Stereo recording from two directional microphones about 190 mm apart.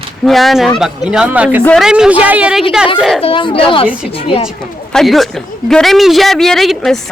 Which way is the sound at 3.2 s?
30° left (ahead or behind).